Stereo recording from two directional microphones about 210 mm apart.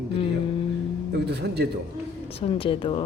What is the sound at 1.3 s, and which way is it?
Speech, 50° right (ahead or behind).